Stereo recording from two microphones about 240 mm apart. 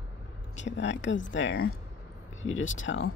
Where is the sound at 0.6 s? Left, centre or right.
Left.